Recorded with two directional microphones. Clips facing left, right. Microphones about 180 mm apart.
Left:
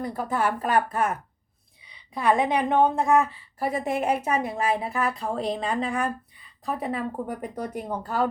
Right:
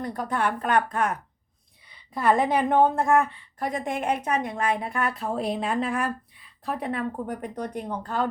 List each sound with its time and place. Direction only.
0.0 s a woman's voice: 5° left (ahead or behind)